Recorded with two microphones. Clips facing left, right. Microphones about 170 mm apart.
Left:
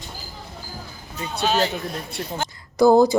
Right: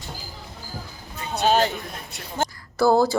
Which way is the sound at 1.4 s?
50° right (ahead or behind).